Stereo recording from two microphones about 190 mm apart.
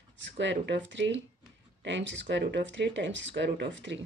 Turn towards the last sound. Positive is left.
turn(degrees=-70)  # may be behind; listen again after turning